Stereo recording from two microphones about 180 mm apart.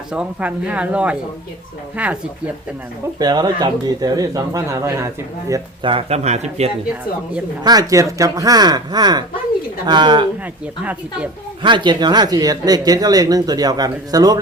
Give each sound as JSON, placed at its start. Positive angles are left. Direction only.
{"t": 0.1, "sound": "speech", "side_deg": -5}
{"t": 3.2, "sound": "speech", "side_deg": -20}
{"t": 5.9, "sound": "speech", "side_deg": -35}
{"t": 7.6, "sound": "speech", "side_deg": -20}
{"t": 11.6, "sound": "speech", "side_deg": -25}